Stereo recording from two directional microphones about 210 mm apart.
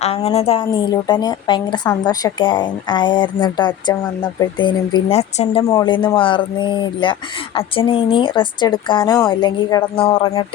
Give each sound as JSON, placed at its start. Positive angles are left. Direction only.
{"t": 0.0, "sound": "speech", "side_deg": 30}